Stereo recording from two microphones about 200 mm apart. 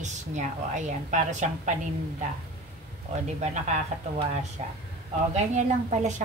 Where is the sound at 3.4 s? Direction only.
35° right (ahead or behind).